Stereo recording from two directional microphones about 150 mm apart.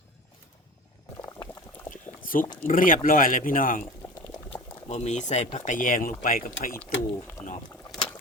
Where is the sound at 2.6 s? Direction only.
65° left (ahead or behind).